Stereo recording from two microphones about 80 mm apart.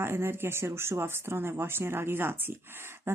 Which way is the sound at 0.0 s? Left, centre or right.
Right.